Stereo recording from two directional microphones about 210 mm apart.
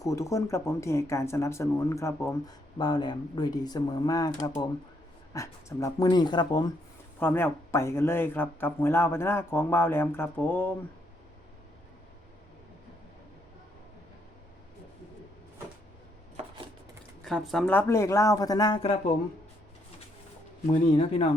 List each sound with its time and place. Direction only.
0.0 s speech: 15° left (ahead or behind)
17.2 s speech: centre (ahead or behind); by 18.9 s 25° left (ahead or behind)
20.9 s speech: 25° left (ahead or behind)